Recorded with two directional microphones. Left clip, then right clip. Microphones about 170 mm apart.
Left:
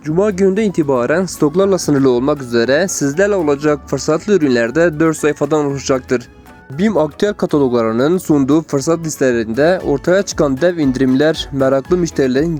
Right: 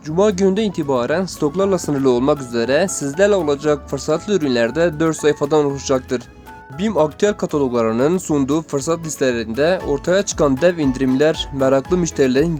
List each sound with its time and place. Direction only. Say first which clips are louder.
0.2 s speech: left 2 dB; 15° left (ahead or behind)